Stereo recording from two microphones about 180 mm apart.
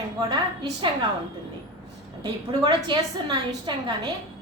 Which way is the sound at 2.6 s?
25° right (ahead or behind).